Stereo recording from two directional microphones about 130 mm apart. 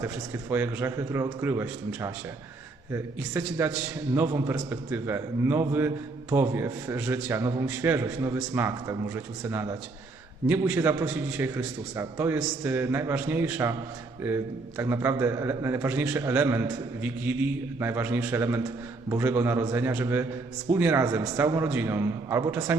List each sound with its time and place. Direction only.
0.5 s a man's voice: 15° right (ahead or behind)
7.0 s a man's voice: 10° right (ahead or behind)
7.3 s a man's voice: 20° right (ahead or behind)